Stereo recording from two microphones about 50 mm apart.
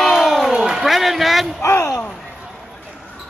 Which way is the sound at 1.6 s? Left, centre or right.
Left.